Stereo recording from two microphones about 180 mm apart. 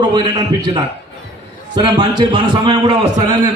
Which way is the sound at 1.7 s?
25° right (ahead or behind).